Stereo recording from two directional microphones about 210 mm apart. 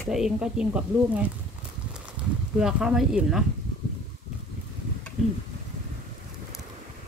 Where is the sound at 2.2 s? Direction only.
25° right (ahead or behind).